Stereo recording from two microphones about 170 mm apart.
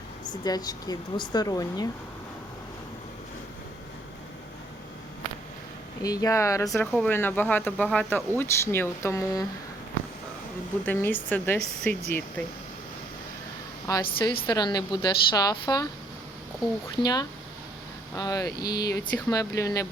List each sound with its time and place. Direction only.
0.4 s a woman's voice: 20° left (ahead or behind)
6.0 s a woman's voice: 20° left (ahead or behind)
10.8 s speech: 10° left (ahead or behind)
13.8 s a woman's voice: 25° left (ahead or behind)
17.0 s a woman's voice: 25° left (ahead or behind)